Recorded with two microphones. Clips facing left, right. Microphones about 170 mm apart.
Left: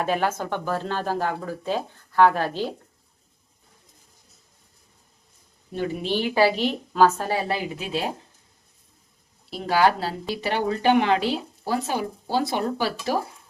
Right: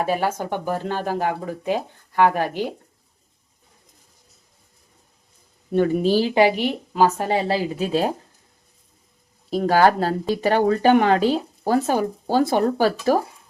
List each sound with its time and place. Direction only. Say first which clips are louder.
0.0 s speech: right 2 dB; 10° right (ahead or behind)
5.7 s speech: right 8 dB; 50° right (ahead or behind)
6.3 s a woman's voice: right 3 dB; 15° right (ahead or behind)
7.9 s speech: right 6 dB; 45° right (ahead or behind)
9.5 s speech: right 4 dB; 45° right (ahead or behind)